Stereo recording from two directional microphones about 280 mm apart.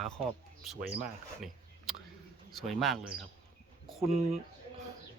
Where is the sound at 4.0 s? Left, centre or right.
Right.